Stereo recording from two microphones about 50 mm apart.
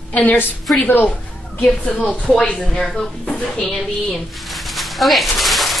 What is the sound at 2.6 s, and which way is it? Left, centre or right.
Speech, centre.